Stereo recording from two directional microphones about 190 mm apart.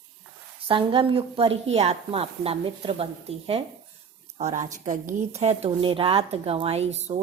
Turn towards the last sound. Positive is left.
turn(degrees=-35)  # may be behind; listen again after turning